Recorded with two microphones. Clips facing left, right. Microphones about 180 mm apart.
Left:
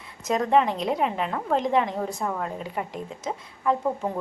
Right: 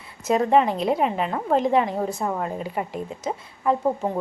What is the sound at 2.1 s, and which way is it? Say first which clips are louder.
Speech: right 3 dB; 25° right (ahead or behind).